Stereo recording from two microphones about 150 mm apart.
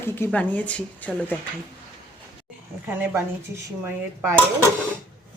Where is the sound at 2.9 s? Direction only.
15° right (ahead or behind).